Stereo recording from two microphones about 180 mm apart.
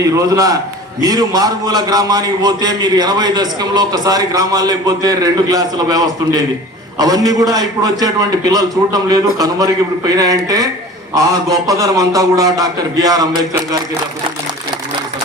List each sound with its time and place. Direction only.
0.0 s a man's voice: 20° right (ahead or behind)